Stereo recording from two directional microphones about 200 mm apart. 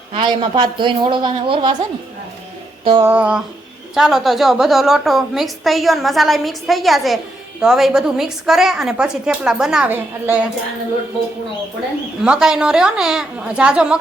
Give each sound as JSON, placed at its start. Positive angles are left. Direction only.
{"t": 0.1, "sound": "a man's voice", "side_deg": -20}
{"t": 2.8, "sound": "a man's voice", "side_deg": -25}
{"t": 3.1, "sound": "a sound", "side_deg": -5}
{"t": 3.9, "sound": "a woman's voice", "side_deg": 0}
{"t": 12.2, "sound": "a woman's voice", "side_deg": -5}